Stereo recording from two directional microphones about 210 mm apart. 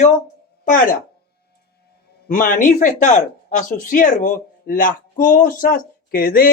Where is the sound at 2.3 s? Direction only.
40° left (ahead or behind).